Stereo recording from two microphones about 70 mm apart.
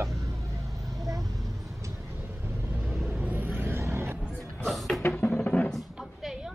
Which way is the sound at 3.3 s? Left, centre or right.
Right.